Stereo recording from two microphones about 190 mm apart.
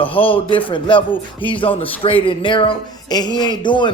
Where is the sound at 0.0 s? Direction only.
30° left (ahead or behind).